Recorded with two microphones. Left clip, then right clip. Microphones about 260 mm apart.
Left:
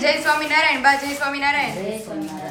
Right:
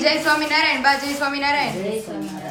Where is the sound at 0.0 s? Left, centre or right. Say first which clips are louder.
Even; centre.